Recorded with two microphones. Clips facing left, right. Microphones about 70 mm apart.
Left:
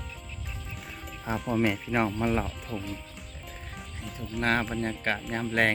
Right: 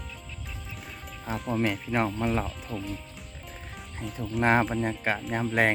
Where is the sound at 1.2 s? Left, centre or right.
Centre.